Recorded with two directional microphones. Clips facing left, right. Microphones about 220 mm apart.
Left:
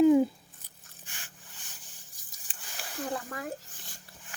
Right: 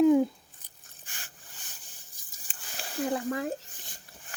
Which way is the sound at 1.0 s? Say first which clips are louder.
Right 1 dB; 40° right (ahead or behind).